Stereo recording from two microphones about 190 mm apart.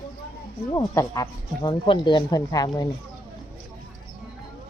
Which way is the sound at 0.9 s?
15° left (ahead or behind).